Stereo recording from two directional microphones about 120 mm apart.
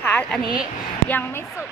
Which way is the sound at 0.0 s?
10° left (ahead or behind).